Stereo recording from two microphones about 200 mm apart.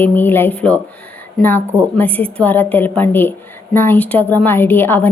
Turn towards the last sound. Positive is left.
turn(degrees=10)  # may be behind; listen again after turning